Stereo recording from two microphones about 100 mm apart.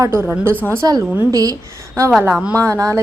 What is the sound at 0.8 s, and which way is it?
Speech, 40° right (ahead or behind).